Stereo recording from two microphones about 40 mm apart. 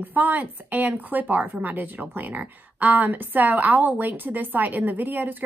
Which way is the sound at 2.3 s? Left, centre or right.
Right.